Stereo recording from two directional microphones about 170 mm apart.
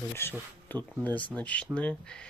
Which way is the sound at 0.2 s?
15° left (ahead or behind).